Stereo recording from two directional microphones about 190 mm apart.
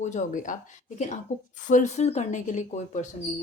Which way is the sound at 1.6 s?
40° left (ahead or behind).